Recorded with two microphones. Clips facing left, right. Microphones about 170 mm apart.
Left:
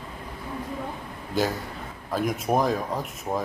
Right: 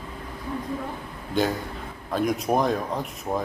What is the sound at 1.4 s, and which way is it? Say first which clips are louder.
Speech: right 2 dB; centre (ahead or behind).